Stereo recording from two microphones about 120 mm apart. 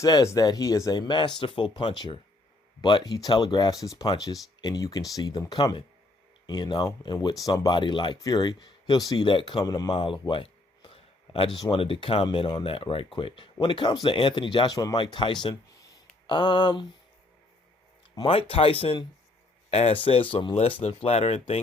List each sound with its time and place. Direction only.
0.0 s speech: 30° left (ahead or behind)
18.1 s speech: 40° left (ahead or behind); by 21.6 s 60° left (ahead or behind)